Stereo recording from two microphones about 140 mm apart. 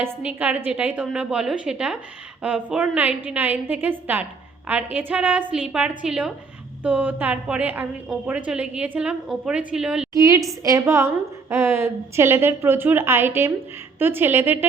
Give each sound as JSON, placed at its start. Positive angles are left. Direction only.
{"t": 0.0, "sound": "a woman's voice", "side_deg": -10}
{"t": 10.2, "sound": "a woman's voice", "side_deg": -25}